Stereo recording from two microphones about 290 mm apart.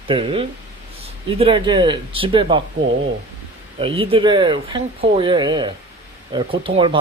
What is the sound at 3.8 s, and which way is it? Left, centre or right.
Speech, centre.